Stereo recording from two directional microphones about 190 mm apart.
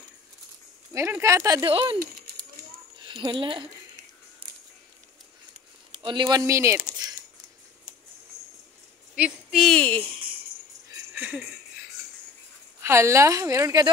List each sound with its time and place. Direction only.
0.9 s a woman's voice: 15° right (ahead or behind)
3.1 s speech: 25° right (ahead or behind)
6.0 s speech: 25° right (ahead or behind)
9.1 s speech: 5° right (ahead or behind)
11.1 s a sound: 10° right (ahead or behind)
12.8 s a woman's voice: 15° right (ahead or behind)